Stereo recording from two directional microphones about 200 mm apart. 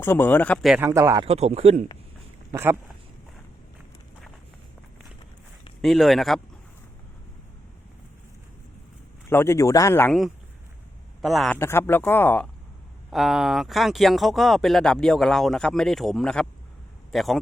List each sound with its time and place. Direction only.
0.0 s speech: 10° left (ahead or behind)
0.8 s speech: 15° right (ahead or behind)
1.2 s a man's voice: 30° right (ahead or behind)
2.5 s speech: 10° right (ahead or behind)
5.8 s speech: centre (ahead or behind)
9.3 s speech: 10° left (ahead or behind)
11.2 s speech: centre (ahead or behind)
11.6 s speech: 10° left (ahead or behind)
13.1 s speech: centre (ahead or behind)